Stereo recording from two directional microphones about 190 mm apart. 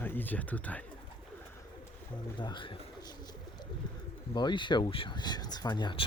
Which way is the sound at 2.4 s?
25° left (ahead or behind).